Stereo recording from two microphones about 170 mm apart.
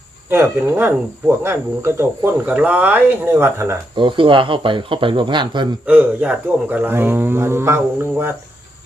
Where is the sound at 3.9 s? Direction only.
30° right (ahead or behind).